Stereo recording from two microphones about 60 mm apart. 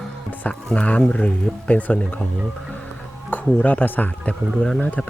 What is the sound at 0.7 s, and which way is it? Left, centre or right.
Speech, left.